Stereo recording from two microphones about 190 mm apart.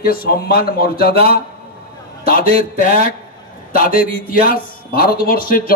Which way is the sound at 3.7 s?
50° left (ahead or behind).